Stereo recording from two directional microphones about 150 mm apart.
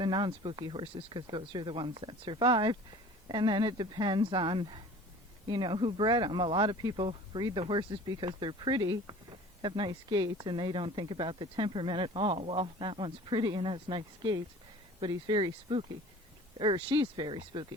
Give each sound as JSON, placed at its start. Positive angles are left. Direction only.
{"t": 0.0, "sound": "speech", "side_deg": -30}